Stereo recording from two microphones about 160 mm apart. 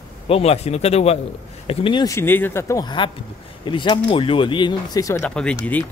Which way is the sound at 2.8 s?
30° left (ahead or behind).